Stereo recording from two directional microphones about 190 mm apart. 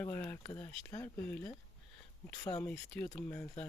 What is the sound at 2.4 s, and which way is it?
Speech, 20° left (ahead or behind).